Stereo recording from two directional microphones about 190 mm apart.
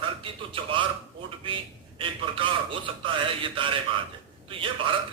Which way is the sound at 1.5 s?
30° right (ahead or behind).